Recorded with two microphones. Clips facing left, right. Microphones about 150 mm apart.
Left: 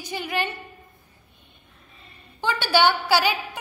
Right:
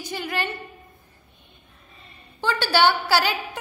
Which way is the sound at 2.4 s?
15° left (ahead or behind).